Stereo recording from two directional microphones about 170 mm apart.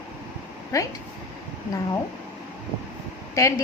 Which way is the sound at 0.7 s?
20° left (ahead or behind).